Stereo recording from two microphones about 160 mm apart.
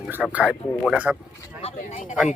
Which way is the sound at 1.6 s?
50° left (ahead or behind).